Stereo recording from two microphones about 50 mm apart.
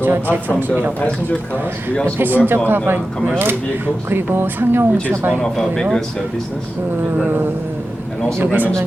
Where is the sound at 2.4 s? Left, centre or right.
Right.